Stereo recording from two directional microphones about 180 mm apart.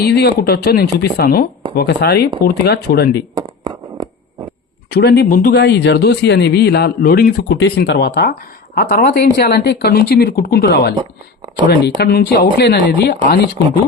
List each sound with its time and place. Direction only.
0.0 s speech: 60° left (ahead or behind)
3.3 s a sound: 20° right (ahead or behind)
4.9 s speech: 65° left (ahead or behind)